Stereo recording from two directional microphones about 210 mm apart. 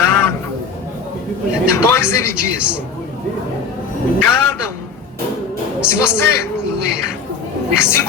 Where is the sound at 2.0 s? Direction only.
90° left.